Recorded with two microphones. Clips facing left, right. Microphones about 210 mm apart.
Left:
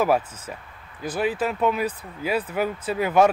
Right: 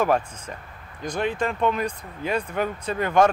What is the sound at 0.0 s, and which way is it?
Speech, 5° left (ahead or behind).